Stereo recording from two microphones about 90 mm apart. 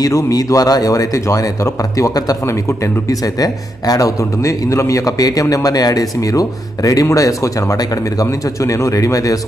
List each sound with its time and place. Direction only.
0.0 s speech: 45° left (ahead or behind)